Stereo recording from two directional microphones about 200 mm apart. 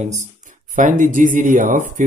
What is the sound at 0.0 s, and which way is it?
Speech, 40° right (ahead or behind).